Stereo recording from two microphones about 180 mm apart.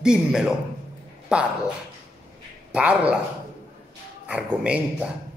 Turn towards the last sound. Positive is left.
turn(degrees=-5)  # may be behind; listen again after turning